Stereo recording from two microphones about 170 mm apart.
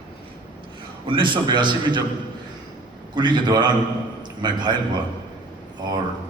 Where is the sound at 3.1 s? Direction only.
25° right (ahead or behind).